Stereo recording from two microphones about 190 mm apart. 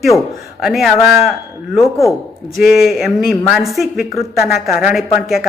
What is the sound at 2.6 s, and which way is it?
A man's voice, centre (ahead or behind).